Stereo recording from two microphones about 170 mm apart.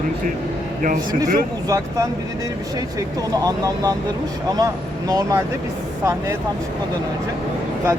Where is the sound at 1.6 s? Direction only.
20° right (ahead or behind).